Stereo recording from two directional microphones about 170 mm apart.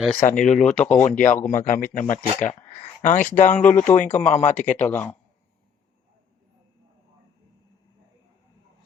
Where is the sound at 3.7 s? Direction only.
15° left (ahead or behind).